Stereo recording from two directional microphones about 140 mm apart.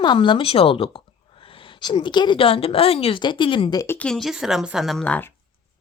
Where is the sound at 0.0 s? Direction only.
35° left (ahead or behind).